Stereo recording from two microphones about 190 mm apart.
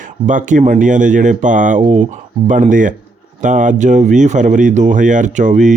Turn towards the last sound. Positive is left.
turn(degrees=-40)  # may be behind; listen again after turning